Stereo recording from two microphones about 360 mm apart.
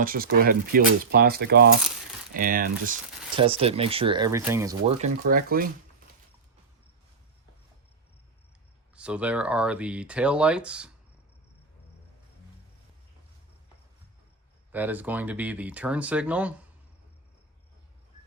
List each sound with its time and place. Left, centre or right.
0.0 s speech: right
9.0 s speech: centre
14.7 s speech: centre